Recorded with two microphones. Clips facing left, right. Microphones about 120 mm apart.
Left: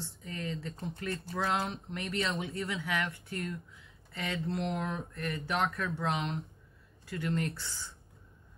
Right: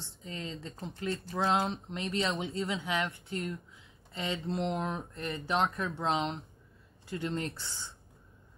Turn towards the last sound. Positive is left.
turn(degrees=-25)  # may be behind; listen again after turning